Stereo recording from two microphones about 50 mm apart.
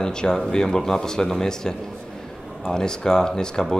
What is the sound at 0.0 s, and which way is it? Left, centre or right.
Speech, centre.